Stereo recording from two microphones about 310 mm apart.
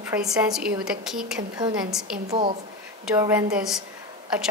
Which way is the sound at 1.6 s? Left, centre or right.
Centre.